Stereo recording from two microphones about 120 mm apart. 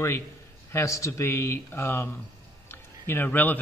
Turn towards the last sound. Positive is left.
turn(degrees=15)  # may be behind; listen again after turning